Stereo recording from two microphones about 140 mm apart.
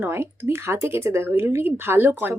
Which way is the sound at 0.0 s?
15° right (ahead or behind).